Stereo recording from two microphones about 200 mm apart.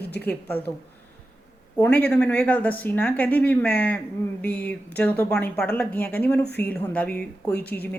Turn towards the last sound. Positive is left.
turn(degrees=10)  # may be behind; listen again after turning